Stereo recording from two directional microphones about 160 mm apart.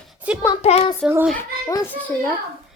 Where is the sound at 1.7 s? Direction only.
15° left (ahead or behind).